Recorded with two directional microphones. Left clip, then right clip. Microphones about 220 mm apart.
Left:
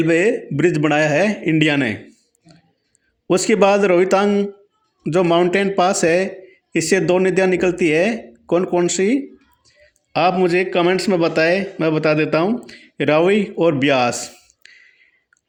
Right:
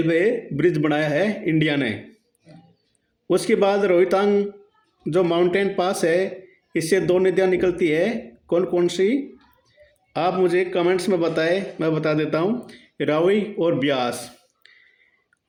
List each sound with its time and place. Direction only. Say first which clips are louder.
0.0 s speech: left 4 dB; 30° left (ahead or behind)
3.2 s a man's voice: left 4 dB; 30° left (ahead or behind)